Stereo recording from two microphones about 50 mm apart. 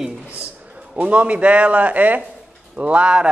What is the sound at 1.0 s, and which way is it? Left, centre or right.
Speech, right.